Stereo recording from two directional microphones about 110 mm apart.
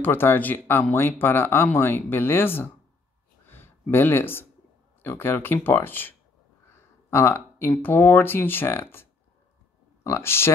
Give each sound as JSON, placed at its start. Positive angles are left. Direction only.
{"t": 0.0, "sound": "speech", "side_deg": 20}
{"t": 3.4, "sound": "a sound", "side_deg": 20}
{"t": 5.0, "sound": "speech", "side_deg": 20}
{"t": 10.0, "sound": "speech", "side_deg": 25}